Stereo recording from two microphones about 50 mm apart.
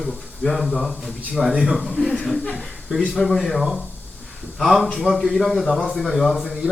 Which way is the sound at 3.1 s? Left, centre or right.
Centre.